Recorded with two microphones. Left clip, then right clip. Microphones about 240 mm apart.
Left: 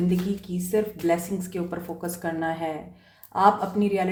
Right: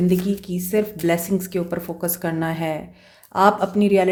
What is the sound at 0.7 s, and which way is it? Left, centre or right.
Speech, right.